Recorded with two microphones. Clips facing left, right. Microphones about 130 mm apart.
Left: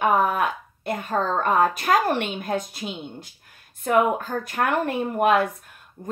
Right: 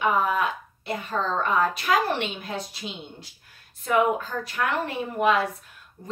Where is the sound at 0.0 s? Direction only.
50° left (ahead or behind).